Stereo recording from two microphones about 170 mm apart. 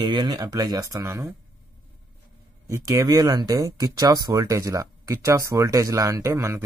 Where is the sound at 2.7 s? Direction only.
20° right (ahead or behind).